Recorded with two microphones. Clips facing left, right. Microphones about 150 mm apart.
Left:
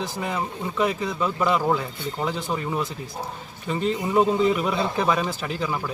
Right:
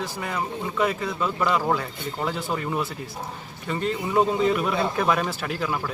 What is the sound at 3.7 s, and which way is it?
A man's voice, 10° left (ahead or behind).